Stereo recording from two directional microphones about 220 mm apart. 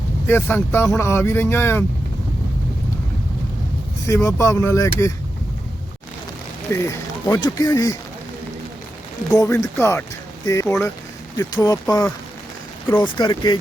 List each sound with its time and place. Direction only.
0.3 s speech: 10° left (ahead or behind)
4.0 s speech: 15° left (ahead or behind)
6.7 s speech: 15° left (ahead or behind)
9.3 s speech: 15° left (ahead or behind)